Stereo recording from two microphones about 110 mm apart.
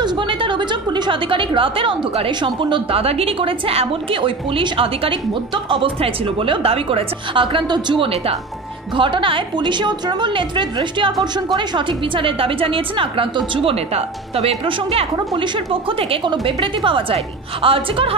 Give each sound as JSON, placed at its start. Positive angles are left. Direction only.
{"t": 0.0, "sound": "a woman's voice", "side_deg": -45}
{"t": 15.1, "sound": "a woman's voice", "side_deg": -45}